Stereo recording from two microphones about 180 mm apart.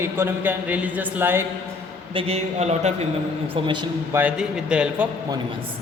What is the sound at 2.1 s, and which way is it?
Speech, 35° right (ahead or behind).